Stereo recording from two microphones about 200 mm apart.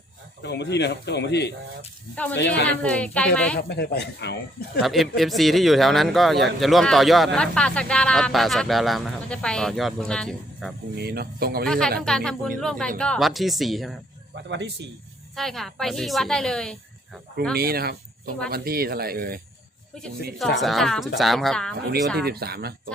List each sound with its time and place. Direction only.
0.4 s speech: 60° left (ahead or behind)
2.8 s speech: 5° left (ahead or behind)
3.6 s speech: 55° left (ahead or behind)
4.8 s speech: centre (ahead or behind)
10.9 s speech: 50° right (ahead or behind)
11.6 s speech: 5° left (ahead or behind)
14.5 s speech: 60° right (ahead or behind)
15.4 s speech: centre (ahead or behind)
17.5 s speech: 50° right (ahead or behind)
20.6 s speech: centre (ahead or behind)
22.2 s speech: 50° right (ahead or behind)